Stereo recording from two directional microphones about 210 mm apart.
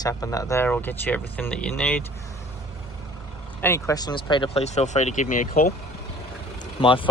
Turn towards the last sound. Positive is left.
turn(degrees=25)  # may be behind; listen again after turning